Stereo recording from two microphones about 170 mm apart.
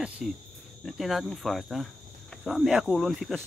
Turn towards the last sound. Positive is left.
turn(degrees=0)  # may be behind; listen again after turning